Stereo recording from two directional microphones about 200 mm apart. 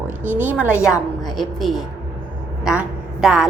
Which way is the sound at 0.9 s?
20° left (ahead or behind).